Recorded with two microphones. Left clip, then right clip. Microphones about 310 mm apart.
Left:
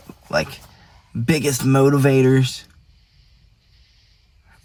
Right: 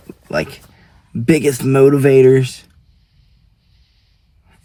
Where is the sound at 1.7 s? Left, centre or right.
Left.